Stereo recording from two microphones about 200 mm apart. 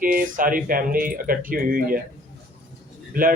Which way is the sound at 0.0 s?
45° right (ahead or behind).